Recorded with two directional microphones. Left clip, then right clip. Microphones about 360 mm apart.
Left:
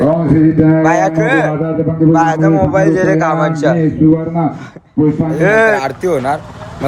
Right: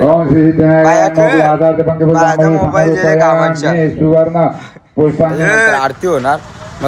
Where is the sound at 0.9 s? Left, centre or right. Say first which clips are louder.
Right 3 dB; centre.